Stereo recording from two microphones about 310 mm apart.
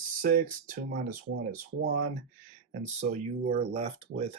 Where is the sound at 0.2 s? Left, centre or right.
Right.